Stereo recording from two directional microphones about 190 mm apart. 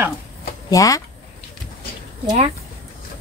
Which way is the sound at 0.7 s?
20° left (ahead or behind).